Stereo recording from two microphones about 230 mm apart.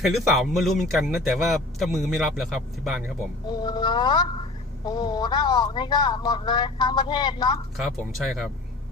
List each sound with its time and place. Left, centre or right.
0.0 s speech: centre
3.5 s speech: centre
7.8 s speech: centre